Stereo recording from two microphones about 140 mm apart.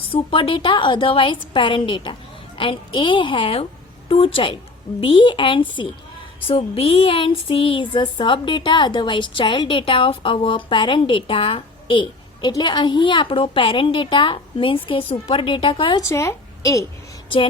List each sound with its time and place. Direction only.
0.1 s a woman's voice: 40° left (ahead or behind)
16.0 s a woman's voice: 20° left (ahead or behind)